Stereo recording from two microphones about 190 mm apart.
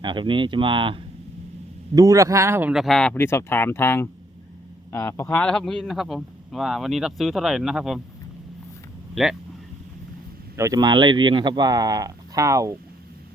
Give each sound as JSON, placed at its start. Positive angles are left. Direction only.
{"t": 0.0, "sound": "a man's voice", "side_deg": -25}
{"t": 9.2, "sound": "a man's voice", "side_deg": 0}
{"t": 10.6, "sound": "speech", "side_deg": -20}